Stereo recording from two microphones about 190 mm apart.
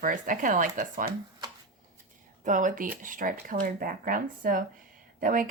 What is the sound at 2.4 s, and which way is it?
Speech, 40° right (ahead or behind).